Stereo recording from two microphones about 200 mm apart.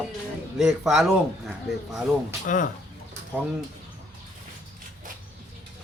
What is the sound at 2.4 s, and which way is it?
Speech, 40° left (ahead or behind).